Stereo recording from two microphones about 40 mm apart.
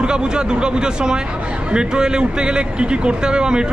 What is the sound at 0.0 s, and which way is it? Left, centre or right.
A man's voice, right.